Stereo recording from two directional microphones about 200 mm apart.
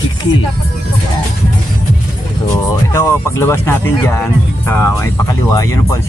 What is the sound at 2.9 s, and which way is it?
Speech, 15° left (ahead or behind).